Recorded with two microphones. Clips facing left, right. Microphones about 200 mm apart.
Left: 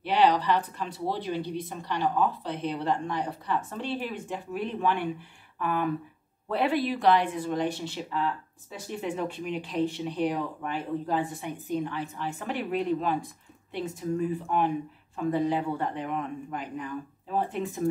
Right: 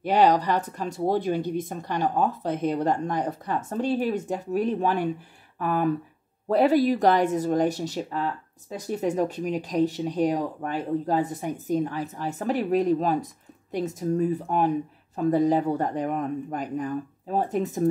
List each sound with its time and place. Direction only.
0.0 s speech: 45° right (ahead or behind)